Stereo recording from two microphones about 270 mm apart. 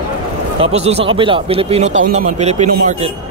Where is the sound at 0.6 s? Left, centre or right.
Right.